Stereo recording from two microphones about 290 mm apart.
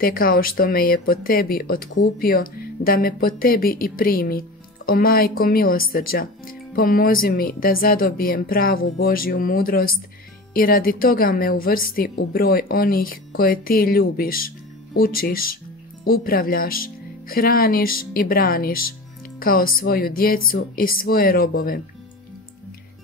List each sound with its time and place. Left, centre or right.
0.0 s speech: left